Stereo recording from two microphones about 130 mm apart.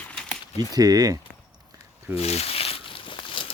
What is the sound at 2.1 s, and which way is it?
Crumpling, 55° left (ahead or behind).